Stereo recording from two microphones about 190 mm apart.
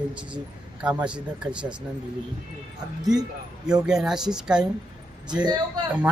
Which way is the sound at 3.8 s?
5° right (ahead or behind).